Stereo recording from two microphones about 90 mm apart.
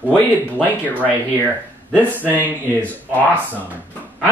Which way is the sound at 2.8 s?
20° left (ahead or behind).